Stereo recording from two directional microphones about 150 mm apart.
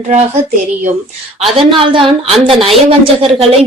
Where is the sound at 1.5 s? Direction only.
35° right (ahead or behind).